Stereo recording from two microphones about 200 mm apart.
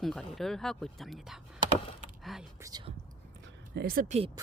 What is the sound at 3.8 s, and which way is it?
Speech, 50° right (ahead or behind).